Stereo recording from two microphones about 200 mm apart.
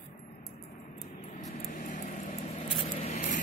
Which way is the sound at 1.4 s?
40° left (ahead or behind).